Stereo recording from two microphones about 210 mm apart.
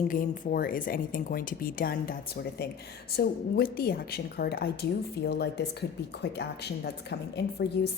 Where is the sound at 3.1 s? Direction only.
50° left (ahead or behind).